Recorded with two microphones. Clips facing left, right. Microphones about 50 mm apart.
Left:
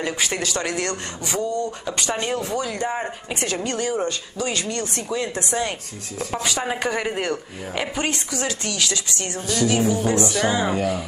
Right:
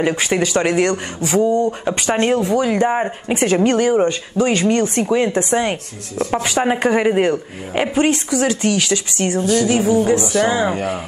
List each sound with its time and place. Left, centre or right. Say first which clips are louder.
0.0 s speech: right 7 dB; right
1.7 s speech: right 7 dB; right
8.0 s speech: right 12 dB; centre